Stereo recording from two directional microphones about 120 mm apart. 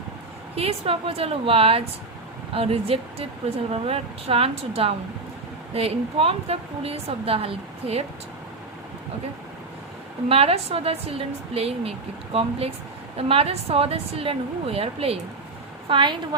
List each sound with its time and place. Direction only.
0.5 s a woman's voice: 55° right (ahead or behind)
10.2 s a woman's voice: 55° right (ahead or behind)
15.9 s a woman's voice: 45° right (ahead or behind)